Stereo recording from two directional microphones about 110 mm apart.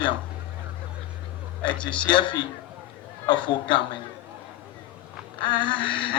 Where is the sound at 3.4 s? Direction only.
45° left (ahead or behind).